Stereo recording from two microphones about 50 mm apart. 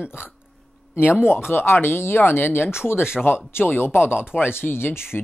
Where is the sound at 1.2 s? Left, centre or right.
Centre.